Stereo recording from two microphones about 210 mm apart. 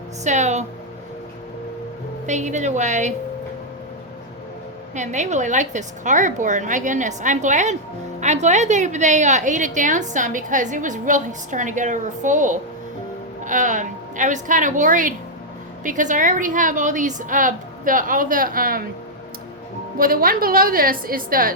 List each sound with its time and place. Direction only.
0.3 s a woman's voice: 35° right (ahead or behind)
2.2 s a woman's voice: 35° right (ahead or behind)
4.9 s a woman's voice: 35° right (ahead or behind)
20.0 s a woman's voice: 45° right (ahead or behind)